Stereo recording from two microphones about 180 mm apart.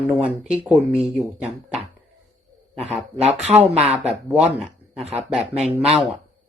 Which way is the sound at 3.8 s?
5° right (ahead or behind).